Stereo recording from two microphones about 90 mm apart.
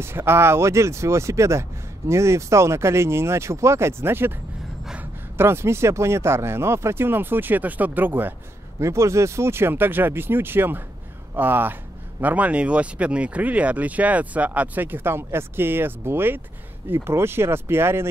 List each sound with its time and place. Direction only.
0.0 s speech: 25° right (ahead or behind)
5.4 s speech: 30° right (ahead or behind)